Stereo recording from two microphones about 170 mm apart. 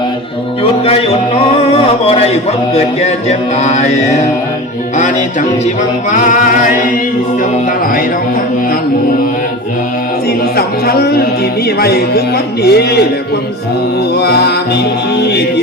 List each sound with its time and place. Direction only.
0.6 s music: 35° left (ahead or behind)
3.6 s mantra: 40° left (ahead or behind)
6.1 s a capella: 50° left (ahead or behind)
10.8 s speech: 65° left (ahead or behind)
14.2 s speech: 70° left (ahead or behind)